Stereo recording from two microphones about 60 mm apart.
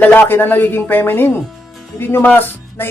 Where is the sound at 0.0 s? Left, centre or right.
Left.